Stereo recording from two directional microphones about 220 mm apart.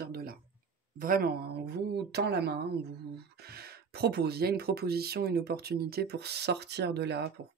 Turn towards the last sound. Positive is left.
turn(degrees=-50)  # may be behind; listen again after turning